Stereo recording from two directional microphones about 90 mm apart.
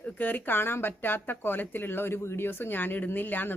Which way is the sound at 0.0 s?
15° left (ahead or behind).